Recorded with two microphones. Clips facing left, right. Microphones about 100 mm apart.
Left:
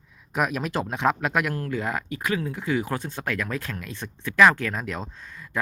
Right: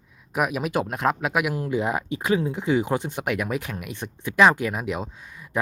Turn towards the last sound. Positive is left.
turn(degrees=-15)  # may be behind; listen again after turning